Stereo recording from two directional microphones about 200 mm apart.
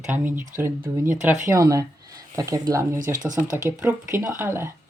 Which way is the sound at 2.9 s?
40° right (ahead or behind).